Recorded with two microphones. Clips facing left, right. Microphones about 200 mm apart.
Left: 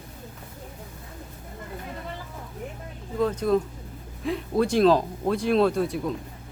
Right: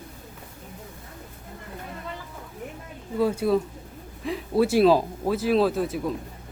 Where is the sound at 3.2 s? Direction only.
5° right (ahead or behind).